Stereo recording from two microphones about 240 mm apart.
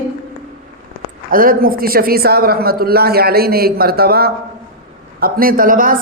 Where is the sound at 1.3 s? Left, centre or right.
Right.